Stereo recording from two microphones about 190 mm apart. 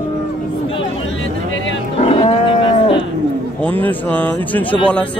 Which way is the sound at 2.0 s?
30° left (ahead or behind).